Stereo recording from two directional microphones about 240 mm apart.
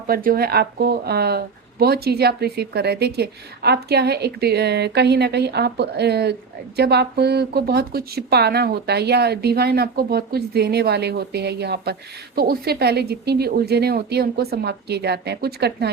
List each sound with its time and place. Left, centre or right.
0.1 s a woman's voice: right